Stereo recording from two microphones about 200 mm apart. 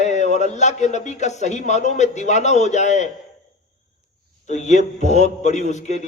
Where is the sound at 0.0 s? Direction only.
35° left (ahead or behind).